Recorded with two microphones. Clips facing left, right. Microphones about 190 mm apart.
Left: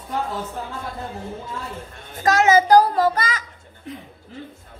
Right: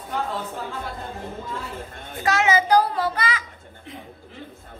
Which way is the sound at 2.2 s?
40° left (ahead or behind).